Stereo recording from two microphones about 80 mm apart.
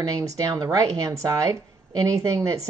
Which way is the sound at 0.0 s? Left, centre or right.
Right.